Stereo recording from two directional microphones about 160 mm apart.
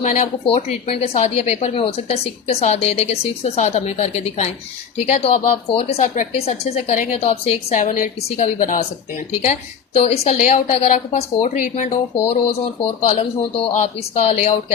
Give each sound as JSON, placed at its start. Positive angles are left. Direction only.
{"t": 0.0, "sound": "speech", "side_deg": 50}
{"t": 0.4, "sound": "a woman's voice", "side_deg": 35}
{"t": 10.0, "sound": "speech", "side_deg": 40}
{"t": 12.3, "sound": "a woman's voice", "side_deg": 40}